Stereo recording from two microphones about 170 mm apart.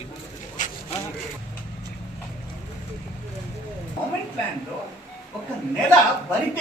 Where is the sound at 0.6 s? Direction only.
50° left (ahead or behind).